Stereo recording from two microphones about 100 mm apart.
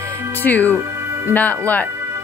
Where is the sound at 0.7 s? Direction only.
25° right (ahead or behind).